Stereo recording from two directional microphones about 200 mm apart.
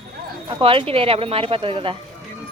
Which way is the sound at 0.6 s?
25° right (ahead or behind).